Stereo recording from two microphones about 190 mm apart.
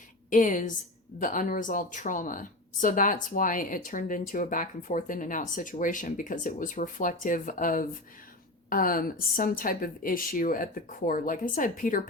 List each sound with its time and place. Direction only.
0.3 s a woman's voice: 45° left (ahead or behind)